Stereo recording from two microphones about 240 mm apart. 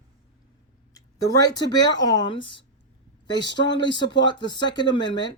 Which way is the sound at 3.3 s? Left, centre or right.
Left.